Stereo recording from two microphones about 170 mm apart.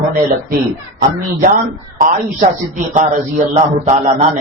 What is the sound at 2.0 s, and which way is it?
A man's voice, 45° right (ahead or behind).